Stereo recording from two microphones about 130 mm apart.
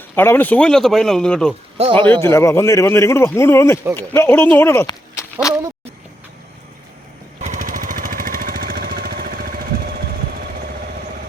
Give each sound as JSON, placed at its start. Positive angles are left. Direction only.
{"t": 0.2, "sound": "speech", "side_deg": 15}
{"t": 2.0, "sound": "a man's voice", "side_deg": 15}
{"t": 4.9, "sound": "a sound", "side_deg": 25}
{"t": 7.4, "sound": "vehicle", "side_deg": -75}
{"t": 9.3, "sound": "jackhammer", "side_deg": -90}